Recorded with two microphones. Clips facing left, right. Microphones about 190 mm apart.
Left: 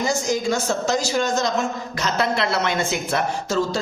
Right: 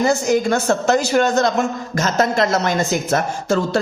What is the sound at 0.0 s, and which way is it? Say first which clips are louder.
A woman's voice: right 6 dB; 60° right (ahead or behind).